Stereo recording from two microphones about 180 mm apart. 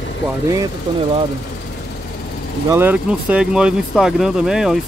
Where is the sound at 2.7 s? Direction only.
10° right (ahead or behind).